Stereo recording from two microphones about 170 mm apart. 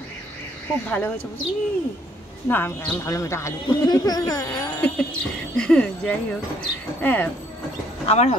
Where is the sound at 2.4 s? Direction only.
10° left (ahead or behind).